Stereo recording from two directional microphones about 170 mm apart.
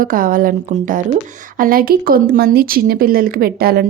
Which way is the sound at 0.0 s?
55° right (ahead or behind).